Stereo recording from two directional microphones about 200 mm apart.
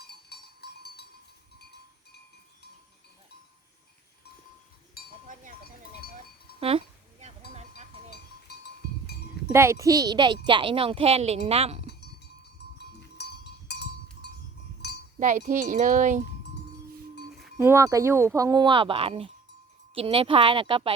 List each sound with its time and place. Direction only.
0.0 s cowbell: 55° left (ahead or behind)
5.0 s chink: 50° left (ahead or behind)
5.3 s sheep: 40° right (ahead or behind)
6.6 s a sound: 30° right (ahead or behind)
9.5 s speech: 15° right (ahead or behind); by 11.8 s 30° right (ahead or behind)
12.6 s a sound: 55° left (ahead or behind)
14.8 s chink: 55° left (ahead or behind)
15.2 s speech: 40° right (ahead or behind)
17.6 s speech: 15° right (ahead or behind)